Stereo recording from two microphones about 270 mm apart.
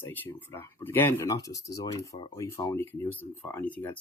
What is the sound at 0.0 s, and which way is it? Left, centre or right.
Speech, centre.